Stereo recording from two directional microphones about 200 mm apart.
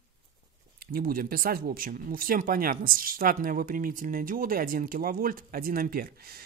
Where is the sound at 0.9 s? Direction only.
45° right (ahead or behind).